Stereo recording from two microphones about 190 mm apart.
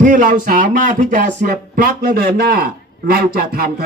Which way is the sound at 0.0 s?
45° right (ahead or behind).